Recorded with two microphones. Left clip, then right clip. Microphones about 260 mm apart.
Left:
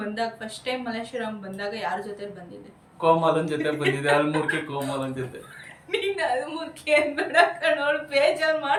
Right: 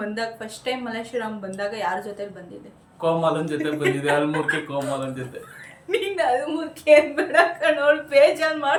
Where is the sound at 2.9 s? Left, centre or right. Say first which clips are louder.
Left 1 dB; centre.